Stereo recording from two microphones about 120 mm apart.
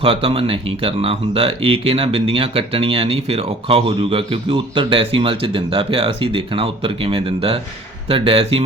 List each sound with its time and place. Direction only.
0.0 s speech: 50° right (ahead or behind)